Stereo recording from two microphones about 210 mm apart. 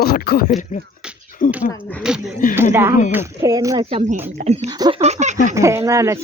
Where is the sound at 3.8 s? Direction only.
30° right (ahead or behind).